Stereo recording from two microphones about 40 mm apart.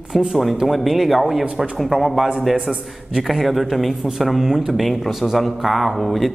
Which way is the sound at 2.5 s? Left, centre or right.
Right.